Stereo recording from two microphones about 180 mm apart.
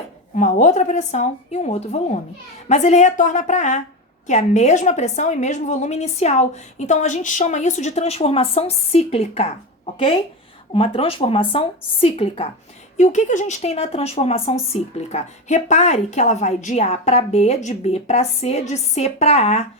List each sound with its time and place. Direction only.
0.3 s speech: 40° left (ahead or behind)